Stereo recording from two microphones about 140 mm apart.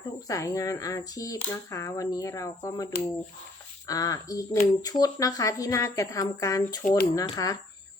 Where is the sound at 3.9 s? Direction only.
25° left (ahead or behind).